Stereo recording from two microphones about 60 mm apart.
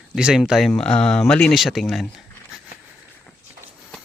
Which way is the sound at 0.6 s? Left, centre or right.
Centre.